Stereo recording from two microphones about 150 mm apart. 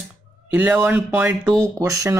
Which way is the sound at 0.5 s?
10° right (ahead or behind).